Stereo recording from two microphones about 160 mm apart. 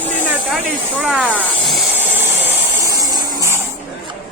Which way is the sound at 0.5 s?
Centre (ahead or behind).